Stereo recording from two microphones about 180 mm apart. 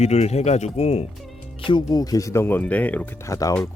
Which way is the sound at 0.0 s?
35° left (ahead or behind).